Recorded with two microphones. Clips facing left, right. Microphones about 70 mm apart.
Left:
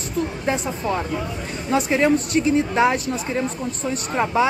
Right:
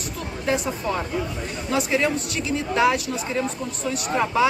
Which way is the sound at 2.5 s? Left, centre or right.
Left.